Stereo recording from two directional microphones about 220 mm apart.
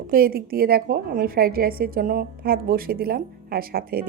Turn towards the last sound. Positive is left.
turn(degrees=-40)  # may be behind; listen again after turning